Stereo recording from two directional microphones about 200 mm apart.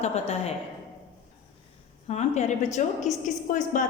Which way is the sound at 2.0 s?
35° left (ahead or behind).